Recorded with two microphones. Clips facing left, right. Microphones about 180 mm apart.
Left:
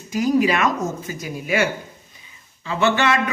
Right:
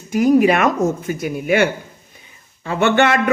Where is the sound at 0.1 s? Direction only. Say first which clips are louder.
Right 5 dB; 55° right (ahead or behind).